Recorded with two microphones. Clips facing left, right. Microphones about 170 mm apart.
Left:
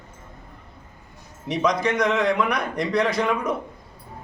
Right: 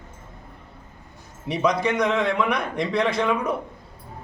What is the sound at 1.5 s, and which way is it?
A man's voice, centre (ahead or behind).